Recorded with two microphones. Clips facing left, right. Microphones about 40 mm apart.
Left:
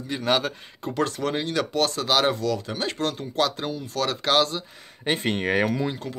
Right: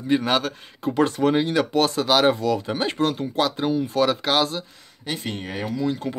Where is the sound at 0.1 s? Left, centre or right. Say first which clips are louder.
Right 2 dB; right.